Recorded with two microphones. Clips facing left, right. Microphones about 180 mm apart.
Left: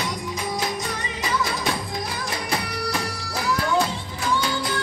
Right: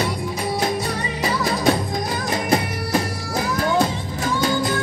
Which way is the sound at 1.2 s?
40° right (ahead or behind).